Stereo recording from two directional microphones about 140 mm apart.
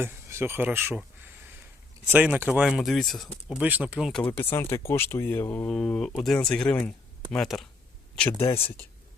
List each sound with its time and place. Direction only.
0.0 s speech: 15° right (ahead or behind); by 3.2 s centre (ahead or behind)
3.6 s speech: 10° right (ahead or behind)
4.1 s speech: 10° left (ahead or behind)